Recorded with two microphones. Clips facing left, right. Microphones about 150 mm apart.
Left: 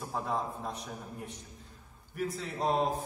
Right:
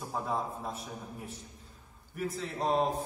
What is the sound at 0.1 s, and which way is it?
A woman's voice, centre (ahead or behind).